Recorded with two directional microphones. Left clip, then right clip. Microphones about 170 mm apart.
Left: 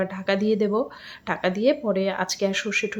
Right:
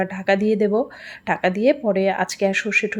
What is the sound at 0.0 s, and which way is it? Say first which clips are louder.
Speech: right 4 dB; 20° right (ahead or behind).